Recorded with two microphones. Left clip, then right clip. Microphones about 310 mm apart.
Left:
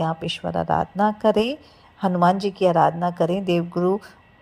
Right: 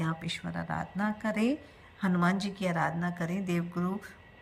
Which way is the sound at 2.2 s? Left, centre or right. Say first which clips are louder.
Left 15 dB; left.